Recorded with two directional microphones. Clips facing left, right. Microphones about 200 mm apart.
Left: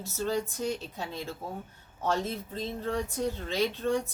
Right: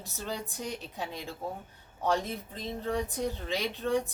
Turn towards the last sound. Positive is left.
turn(degrees=-15)  # may be behind; listen again after turning